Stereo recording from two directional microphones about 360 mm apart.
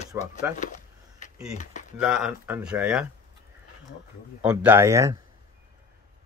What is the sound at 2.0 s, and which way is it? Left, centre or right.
Speech, centre.